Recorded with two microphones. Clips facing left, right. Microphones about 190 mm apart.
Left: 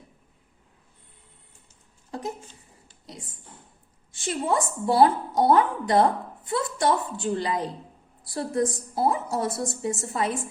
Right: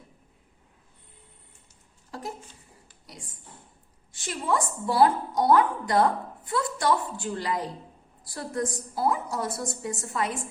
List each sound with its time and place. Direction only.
2.0 s a woman's voice: 20° left (ahead or behind)
4.1 s a woman's voice: 25° left (ahead or behind)